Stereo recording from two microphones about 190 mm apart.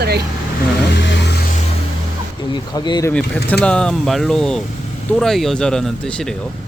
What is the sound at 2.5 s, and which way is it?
Speech, 25° left (ahead or behind).